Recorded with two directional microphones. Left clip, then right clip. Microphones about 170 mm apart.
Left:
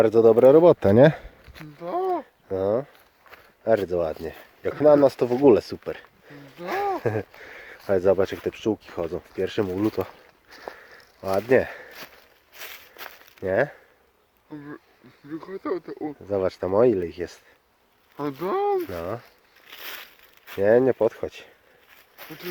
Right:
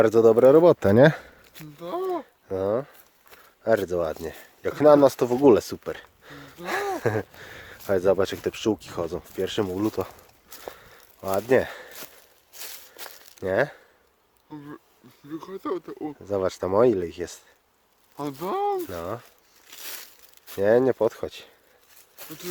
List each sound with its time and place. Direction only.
0.0 s speech: 20° right (ahead or behind)
1.8 s a sound: 80° right
2.5 s speech: 10° right (ahead or behind)
6.7 s a sound: 20° right (ahead or behind)
7.9 s speech: 10° right (ahead or behind)
11.3 s speech: 5° right (ahead or behind)
12.5 s a sound: 15° right (ahead or behind)
14.5 s speech: 65° right (ahead or behind)
16.2 s speech: 15° right (ahead or behind)
18.2 s speech: 65° right (ahead or behind)
18.9 s speech: 5° right (ahead or behind)
19.6 s crumpling: 25° right (ahead or behind)
20.6 s speech: 10° right (ahead or behind)